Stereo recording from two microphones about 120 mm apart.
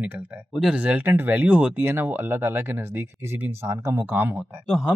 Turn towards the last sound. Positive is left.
turn(degrees=-5)  # may be behind; listen again after turning